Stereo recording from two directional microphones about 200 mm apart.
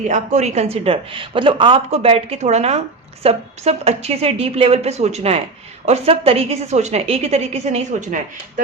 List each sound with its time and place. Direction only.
0.1 s a woman's voice: 35° right (ahead or behind)